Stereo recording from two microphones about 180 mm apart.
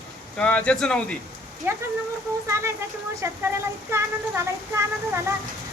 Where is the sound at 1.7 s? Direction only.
10° right (ahead or behind).